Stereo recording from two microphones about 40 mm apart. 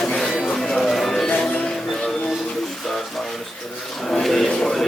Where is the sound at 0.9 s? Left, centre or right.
Centre.